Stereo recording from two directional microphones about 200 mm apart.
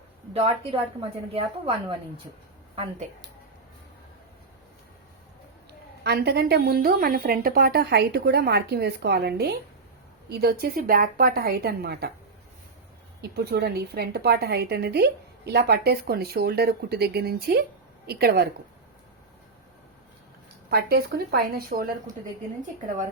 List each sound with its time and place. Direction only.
0.3 s a woman's voice: 30° right (ahead or behind)
6.0 s a woman's voice: 55° right (ahead or behind)
13.3 s a woman's voice: 55° right (ahead or behind)
20.7 s a woman's voice: 50° right (ahead or behind)